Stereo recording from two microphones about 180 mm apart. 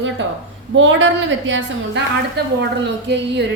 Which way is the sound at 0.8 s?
90° right.